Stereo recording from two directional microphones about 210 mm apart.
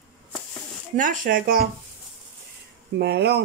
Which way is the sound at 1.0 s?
40° right (ahead or behind).